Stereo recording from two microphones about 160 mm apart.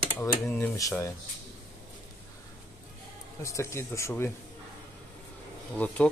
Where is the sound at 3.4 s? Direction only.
20° left (ahead or behind).